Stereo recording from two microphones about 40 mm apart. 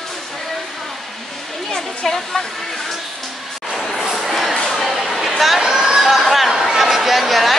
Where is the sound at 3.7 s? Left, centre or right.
Centre.